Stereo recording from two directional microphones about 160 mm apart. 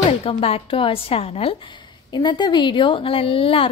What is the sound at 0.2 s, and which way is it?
A woman's voice, 35° left (ahead or behind).